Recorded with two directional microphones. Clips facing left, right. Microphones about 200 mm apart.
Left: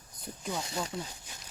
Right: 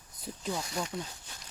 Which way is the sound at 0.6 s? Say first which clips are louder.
Even; 25° left (ahead or behind).